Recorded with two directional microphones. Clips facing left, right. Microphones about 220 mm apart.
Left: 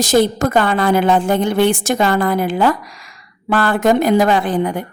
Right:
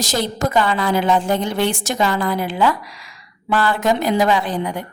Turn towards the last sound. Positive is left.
turn(degrees=50)  # may be behind; listen again after turning